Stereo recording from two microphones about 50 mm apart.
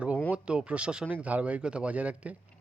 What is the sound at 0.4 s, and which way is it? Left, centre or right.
Speech, right.